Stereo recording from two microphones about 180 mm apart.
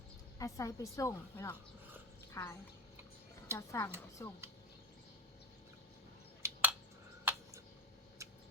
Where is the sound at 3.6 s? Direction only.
15° left (ahead or behind).